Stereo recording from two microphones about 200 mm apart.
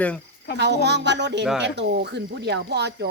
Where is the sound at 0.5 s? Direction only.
60° right (ahead or behind).